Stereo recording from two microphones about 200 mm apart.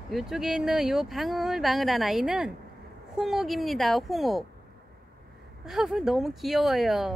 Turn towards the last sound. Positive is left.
turn(degrees=0)  # may be behind; listen again after turning